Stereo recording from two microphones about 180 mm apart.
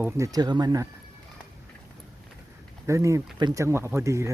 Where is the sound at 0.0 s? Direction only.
20° right (ahead or behind).